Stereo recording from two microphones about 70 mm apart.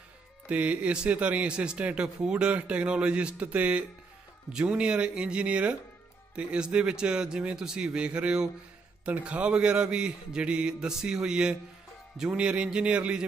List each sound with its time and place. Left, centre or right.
0.5 s speech: centre